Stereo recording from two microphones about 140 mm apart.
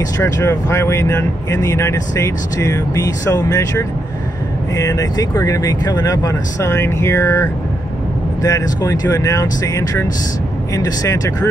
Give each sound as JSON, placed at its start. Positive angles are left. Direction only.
{"t": 0.2, "sound": "speech", "side_deg": 20}